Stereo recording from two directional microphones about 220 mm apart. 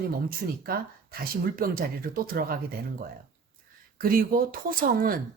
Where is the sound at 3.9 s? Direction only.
40° right (ahead or behind).